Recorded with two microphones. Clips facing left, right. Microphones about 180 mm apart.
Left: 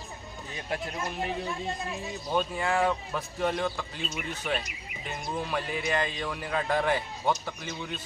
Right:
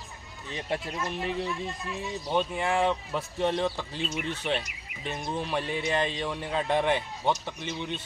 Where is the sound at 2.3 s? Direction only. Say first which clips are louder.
Right 1 dB; 20° right (ahead or behind).